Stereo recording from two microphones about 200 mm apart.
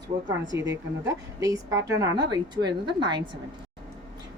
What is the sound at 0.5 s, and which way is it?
Speech, 65° right (ahead or behind).